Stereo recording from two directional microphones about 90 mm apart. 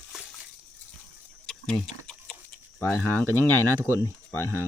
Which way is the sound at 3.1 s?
25° left (ahead or behind).